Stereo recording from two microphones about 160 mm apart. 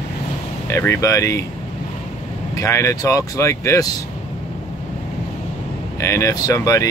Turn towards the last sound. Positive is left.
turn(degrees=20)  # may be behind; listen again after turning